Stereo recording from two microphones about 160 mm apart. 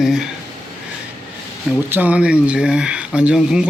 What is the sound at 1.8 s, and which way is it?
Speech, 10° right (ahead or behind).